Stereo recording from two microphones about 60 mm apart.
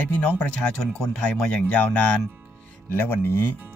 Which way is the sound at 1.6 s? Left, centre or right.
Left.